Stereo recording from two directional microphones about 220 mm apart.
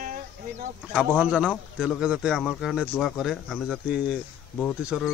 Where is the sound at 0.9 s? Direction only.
5° right (ahead or behind).